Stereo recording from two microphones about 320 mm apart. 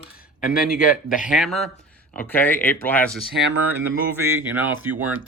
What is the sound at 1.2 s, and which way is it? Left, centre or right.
Speech, centre.